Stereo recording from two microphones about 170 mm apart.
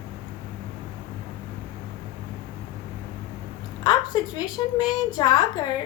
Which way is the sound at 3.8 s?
25° left (ahead or behind).